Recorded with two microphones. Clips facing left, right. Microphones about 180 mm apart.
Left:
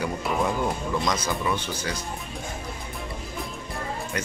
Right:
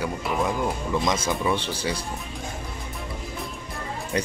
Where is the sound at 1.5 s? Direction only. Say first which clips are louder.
Right 3 dB; 30° right (ahead or behind).